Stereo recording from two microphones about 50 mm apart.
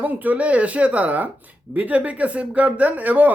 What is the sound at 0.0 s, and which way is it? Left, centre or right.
Speech, right.